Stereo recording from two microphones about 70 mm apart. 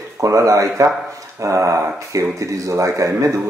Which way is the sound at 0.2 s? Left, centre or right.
Right.